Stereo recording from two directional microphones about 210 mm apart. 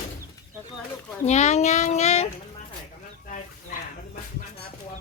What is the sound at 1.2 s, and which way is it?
A child's voice, 35° left (ahead or behind).